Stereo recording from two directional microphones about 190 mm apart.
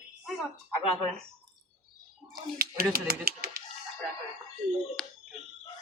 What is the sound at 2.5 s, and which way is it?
Speech, 55° right (ahead or behind).